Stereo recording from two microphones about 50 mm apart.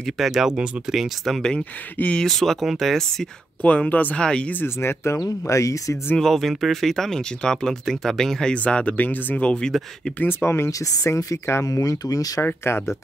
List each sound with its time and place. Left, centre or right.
0.0 s speech: centre
1.6 s speech: left
2.2 s speech: centre
3.6 s speech: left
4.2 s speech: centre
4.6 s speech: left
6.1 s speech: centre
8.6 s speech: left
9.4 s speech: left
9.7 s speech: centre
10.4 s speech: left
12.6 s speech: left